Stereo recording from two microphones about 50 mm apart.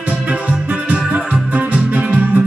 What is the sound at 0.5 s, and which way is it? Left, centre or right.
Music, right.